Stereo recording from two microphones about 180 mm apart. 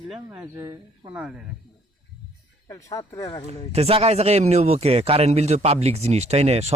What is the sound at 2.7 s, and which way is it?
Speech, 20° left (ahead or behind).